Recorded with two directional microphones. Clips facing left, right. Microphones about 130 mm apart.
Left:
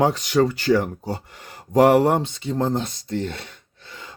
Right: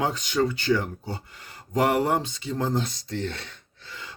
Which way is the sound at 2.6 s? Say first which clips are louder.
Left 3 dB; 50° left (ahead or behind).